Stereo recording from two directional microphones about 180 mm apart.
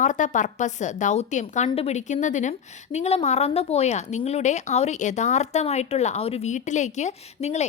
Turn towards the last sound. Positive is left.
turn(degrees=40)  # may be behind; listen again after turning